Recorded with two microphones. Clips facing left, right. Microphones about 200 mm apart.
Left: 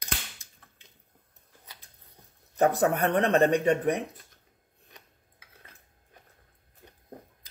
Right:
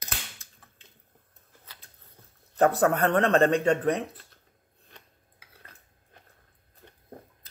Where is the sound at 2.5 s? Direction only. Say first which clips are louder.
Right 1 dB; 15° left (ahead or behind).